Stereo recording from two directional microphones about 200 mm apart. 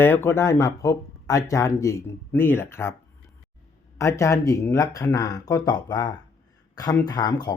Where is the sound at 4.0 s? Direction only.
15° left (ahead or behind).